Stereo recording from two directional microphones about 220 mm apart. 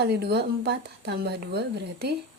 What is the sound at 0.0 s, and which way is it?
Speech, 45° right (ahead or behind).